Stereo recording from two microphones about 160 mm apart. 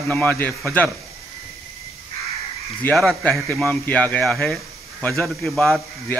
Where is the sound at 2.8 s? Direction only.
5° left (ahead or behind).